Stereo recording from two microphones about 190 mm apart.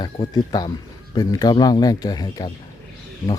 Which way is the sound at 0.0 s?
20° left (ahead or behind).